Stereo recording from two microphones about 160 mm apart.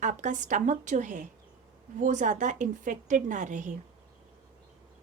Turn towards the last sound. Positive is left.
turn(degrees=-50)  # may be behind; listen again after turning